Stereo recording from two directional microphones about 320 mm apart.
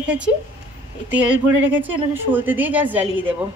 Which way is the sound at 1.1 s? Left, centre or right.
Centre.